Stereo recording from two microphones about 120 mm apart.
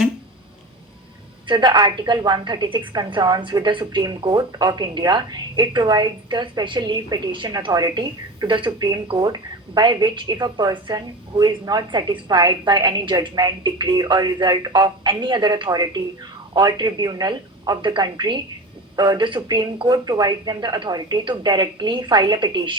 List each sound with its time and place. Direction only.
1.5 s a woman's voice: 40° right (ahead or behind)